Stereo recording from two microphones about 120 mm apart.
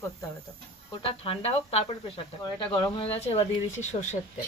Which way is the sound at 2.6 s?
45° left (ahead or behind).